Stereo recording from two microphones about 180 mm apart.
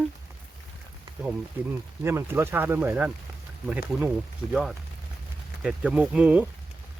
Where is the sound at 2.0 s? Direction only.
15° right (ahead or behind).